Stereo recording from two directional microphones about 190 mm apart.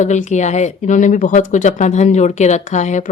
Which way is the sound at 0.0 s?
40° left (ahead or behind).